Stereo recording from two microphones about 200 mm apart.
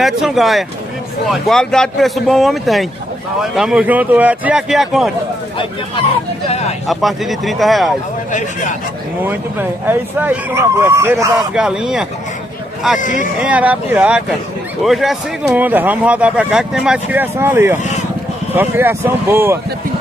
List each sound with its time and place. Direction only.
0.0 s speech: centre (ahead or behind)
6.9 s speech: centre (ahead or behind)
8.3 s speech: 40° left (ahead or behind)
9.2 s speech: 10° right (ahead or behind)
11.5 s speech: 5° right (ahead or behind)
13.0 s speech: 40° left (ahead or behind)
13.4 s speech: 5° right (ahead or behind)